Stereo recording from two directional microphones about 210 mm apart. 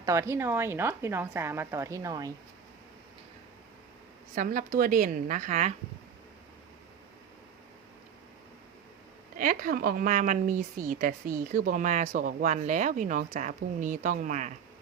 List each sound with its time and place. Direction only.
0.0 s a woman's voice: 15° right (ahead or behind)
4.4 s speech: 40° right (ahead or behind)
9.4 s speech: 40° right (ahead or behind)